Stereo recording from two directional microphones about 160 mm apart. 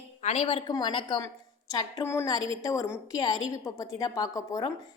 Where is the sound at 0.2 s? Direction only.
45° left (ahead or behind).